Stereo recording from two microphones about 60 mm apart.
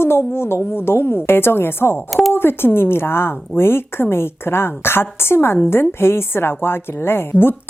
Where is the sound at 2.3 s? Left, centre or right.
Left.